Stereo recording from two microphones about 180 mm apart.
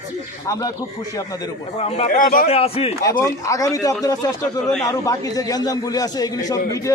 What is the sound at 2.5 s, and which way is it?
Speech, 35° left (ahead or behind).